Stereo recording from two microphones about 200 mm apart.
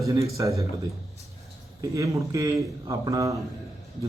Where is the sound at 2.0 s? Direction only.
15° right (ahead or behind).